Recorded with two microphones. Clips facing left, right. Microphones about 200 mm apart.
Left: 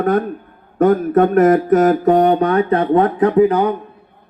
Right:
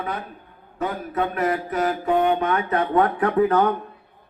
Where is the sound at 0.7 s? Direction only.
50° left (ahead or behind); by 3.7 s 15° left (ahead or behind).